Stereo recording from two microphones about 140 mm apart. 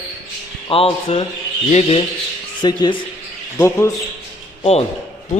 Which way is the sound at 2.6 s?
35° left (ahead or behind).